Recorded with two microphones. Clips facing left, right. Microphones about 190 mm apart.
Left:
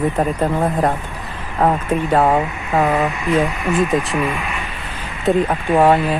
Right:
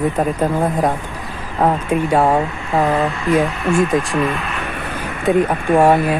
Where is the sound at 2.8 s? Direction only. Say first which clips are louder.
Right 1 dB; 15° left (ahead or behind).